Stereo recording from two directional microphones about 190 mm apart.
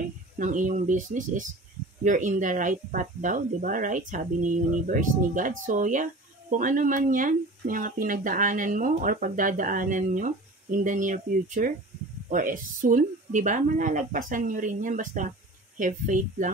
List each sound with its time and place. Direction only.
0.4 s speech: 40° right (ahead or behind)